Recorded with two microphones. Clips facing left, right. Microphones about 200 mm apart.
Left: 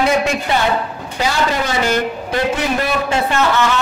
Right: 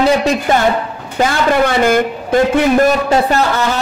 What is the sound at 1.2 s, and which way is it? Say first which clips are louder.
A man's voice: right 6 dB; 50° right (ahead or behind).